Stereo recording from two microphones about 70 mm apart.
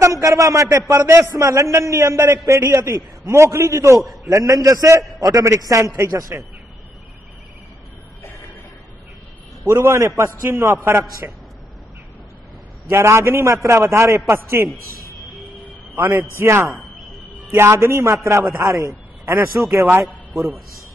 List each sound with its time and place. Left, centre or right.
0.0 s a man's voice: right
4.3 s a man's voice: right
9.7 s a man's voice: right
12.9 s a man's voice: right
16.1 s a man's voice: right
19.2 s a man's voice: right